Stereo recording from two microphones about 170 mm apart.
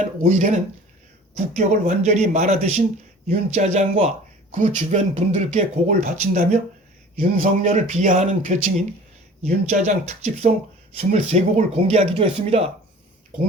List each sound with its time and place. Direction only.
0.0 s speech: 45° right (ahead or behind)
1.5 s speech: 45° right (ahead or behind)